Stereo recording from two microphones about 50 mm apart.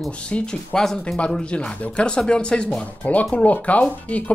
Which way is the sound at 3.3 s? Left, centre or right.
Left.